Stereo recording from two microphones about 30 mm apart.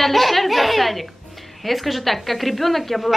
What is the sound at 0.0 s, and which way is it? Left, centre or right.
A woman's voice, centre.